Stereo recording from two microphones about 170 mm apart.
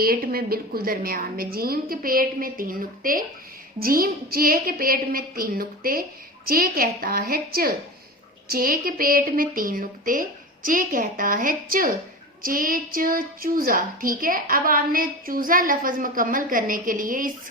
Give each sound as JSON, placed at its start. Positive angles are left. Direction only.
{"t": 0.0, "sound": "a woman's voice", "side_deg": -60}